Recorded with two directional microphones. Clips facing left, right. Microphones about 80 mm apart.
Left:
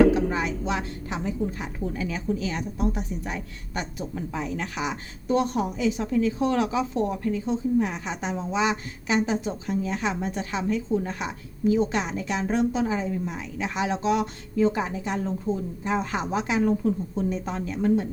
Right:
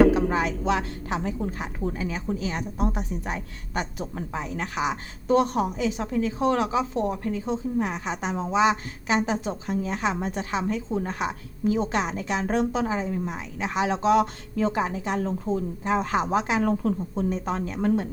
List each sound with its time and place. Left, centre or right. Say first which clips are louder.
0.3 s a woman's voice: right 2 dB; right
0.6 s a woman's voice: right 3 dB; right
13.0 s speech: even; right
16.6 s a woman's voice: left 1 dB; right
17.2 s speech: right 3 dB; right